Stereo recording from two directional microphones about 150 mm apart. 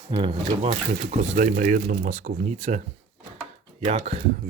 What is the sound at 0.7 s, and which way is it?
Speech, 50° right (ahead or behind).